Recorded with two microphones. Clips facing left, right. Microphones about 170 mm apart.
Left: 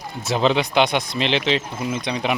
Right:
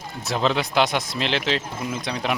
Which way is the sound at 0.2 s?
Centre (ahead or behind).